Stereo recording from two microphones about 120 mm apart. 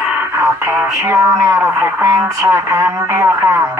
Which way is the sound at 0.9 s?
25° right (ahead or behind).